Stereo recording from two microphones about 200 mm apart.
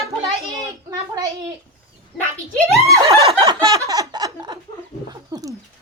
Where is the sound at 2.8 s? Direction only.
15° right (ahead or behind).